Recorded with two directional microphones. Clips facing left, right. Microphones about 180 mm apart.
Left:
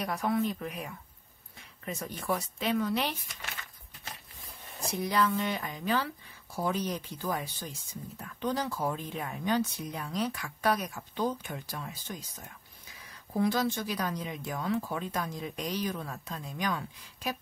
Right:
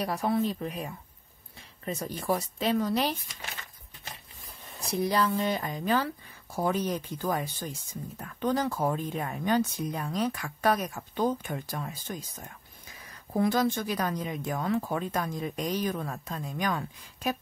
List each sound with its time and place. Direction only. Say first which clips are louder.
0.0 s speech: right 2 dB; 30° right (ahead or behind)
5.0 s speech: right 2 dB; 35° right (ahead or behind); by 12.2 s 50° right (ahead or behind)
13.3 s speech: right 3 dB; 50° right (ahead or behind)